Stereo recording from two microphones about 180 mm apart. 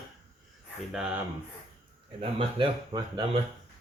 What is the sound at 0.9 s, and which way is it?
Speech, 5° right (ahead or behind).